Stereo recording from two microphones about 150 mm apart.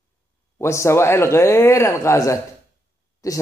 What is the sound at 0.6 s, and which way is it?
Speech, 20° left (ahead or behind).